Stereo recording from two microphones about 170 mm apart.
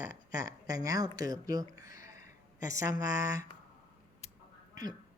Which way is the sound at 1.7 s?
20° right (ahead or behind).